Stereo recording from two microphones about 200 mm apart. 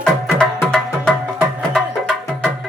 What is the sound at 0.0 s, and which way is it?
Music, 5° left (ahead or behind).